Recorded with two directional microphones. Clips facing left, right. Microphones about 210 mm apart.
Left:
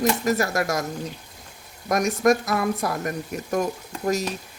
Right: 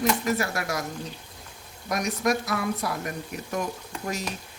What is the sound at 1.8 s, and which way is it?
Speech, 45° left (ahead or behind).